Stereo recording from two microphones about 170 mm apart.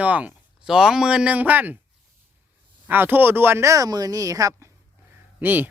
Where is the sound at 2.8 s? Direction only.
10° right (ahead or behind).